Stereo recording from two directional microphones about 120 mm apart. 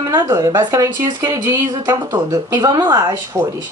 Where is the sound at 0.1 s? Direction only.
30° right (ahead or behind).